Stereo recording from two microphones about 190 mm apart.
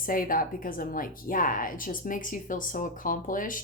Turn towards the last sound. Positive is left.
turn(degrees=45)  # may be behind; listen again after turning